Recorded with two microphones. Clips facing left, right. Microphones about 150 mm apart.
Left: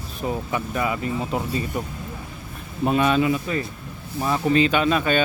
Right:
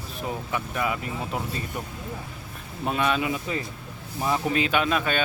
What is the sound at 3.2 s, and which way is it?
Speech, 20° right (ahead or behind).